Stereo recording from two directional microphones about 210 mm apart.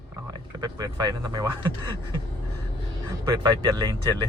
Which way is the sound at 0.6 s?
20° right (ahead or behind).